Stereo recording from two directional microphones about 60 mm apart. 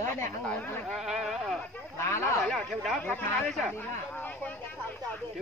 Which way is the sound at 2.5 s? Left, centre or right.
Centre.